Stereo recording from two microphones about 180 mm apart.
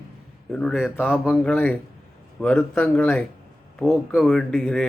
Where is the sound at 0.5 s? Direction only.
Centre (ahead or behind).